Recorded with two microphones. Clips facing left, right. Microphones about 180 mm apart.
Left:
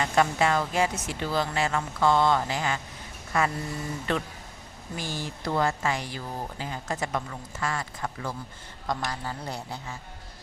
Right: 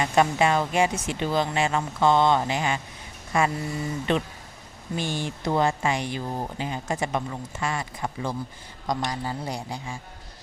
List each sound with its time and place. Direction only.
0.0 s a man's voice: 20° right (ahead or behind)